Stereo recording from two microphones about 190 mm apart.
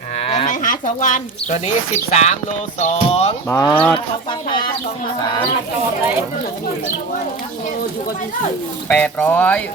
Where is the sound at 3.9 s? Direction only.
25° left (ahead or behind).